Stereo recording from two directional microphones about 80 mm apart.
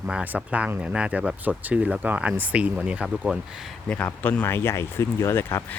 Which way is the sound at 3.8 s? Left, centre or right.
Left.